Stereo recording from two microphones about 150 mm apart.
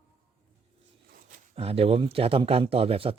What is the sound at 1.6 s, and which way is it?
Speech, 40° right (ahead or behind).